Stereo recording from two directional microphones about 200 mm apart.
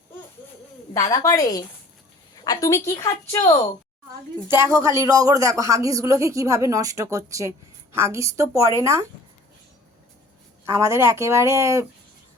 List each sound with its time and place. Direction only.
1.2 s a woman's voice: 15° left (ahead or behind)
4.4 s speech: 10° right (ahead or behind)
10.7 s speech: 15° right (ahead or behind)